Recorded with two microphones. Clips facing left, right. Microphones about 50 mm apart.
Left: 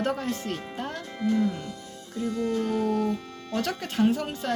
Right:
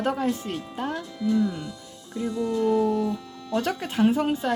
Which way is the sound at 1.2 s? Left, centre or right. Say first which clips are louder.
Right 1 dB; left.